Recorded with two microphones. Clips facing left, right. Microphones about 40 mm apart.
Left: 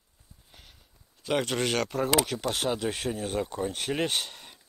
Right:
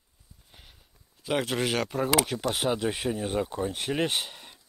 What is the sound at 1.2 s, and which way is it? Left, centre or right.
Speech, centre.